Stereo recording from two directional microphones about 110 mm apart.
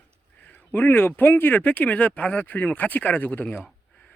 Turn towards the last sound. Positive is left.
turn(degrees=10)  # may be behind; listen again after turning